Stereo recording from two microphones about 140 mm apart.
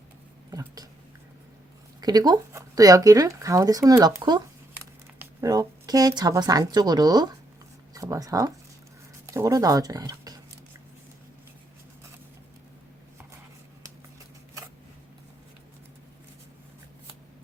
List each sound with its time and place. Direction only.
2.0 s a woman's voice: 30° right (ahead or behind)